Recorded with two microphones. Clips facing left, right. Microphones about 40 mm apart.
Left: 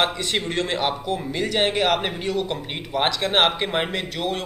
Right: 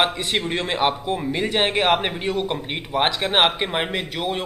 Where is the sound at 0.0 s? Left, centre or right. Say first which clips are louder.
Right 1 dB; right.